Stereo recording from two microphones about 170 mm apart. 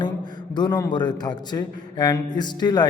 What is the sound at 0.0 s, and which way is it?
A man's voice, 25° left (ahead or behind).